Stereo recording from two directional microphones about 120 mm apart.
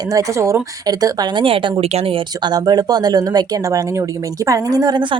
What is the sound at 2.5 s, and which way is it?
Speech, 35° right (ahead or behind).